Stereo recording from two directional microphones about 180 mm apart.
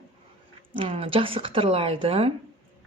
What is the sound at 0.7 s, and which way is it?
Speech, 30° right (ahead or behind).